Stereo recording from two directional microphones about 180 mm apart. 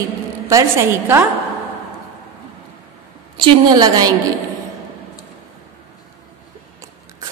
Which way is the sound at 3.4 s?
25° right (ahead or behind).